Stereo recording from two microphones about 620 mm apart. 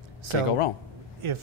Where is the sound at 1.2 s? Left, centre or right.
Right.